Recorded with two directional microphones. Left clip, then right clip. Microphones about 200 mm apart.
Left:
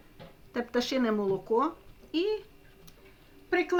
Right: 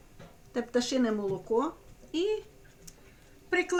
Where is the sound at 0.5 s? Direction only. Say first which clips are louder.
Even; 30° left (ahead or behind).